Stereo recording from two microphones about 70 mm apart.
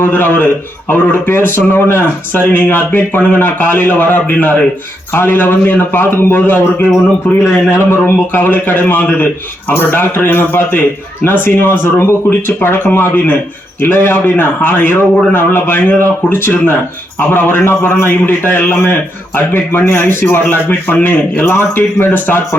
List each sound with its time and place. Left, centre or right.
0.0 s a man's voice: left
7.8 s a man's voice: left